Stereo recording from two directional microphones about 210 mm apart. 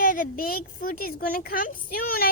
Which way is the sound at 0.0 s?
40° left (ahead or behind).